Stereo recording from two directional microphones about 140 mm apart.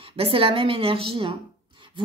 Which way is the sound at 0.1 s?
40° right (ahead or behind).